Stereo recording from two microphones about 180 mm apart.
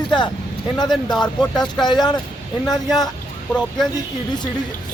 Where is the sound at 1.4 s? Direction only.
25° left (ahead or behind).